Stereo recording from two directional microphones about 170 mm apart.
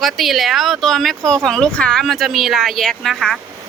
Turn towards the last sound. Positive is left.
turn(degrees=0)  # may be behind; listen again after turning